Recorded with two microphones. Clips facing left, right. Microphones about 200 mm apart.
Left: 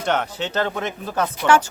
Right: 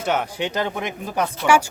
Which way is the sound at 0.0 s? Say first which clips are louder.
Even; 10° right (ahead or behind).